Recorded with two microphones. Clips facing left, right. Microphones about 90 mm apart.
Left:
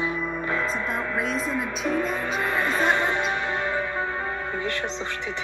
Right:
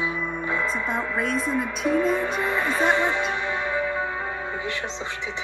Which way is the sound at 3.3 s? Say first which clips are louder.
Even; 50° left (ahead or behind).